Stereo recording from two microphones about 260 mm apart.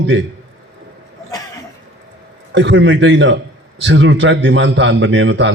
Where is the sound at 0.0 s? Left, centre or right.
Right.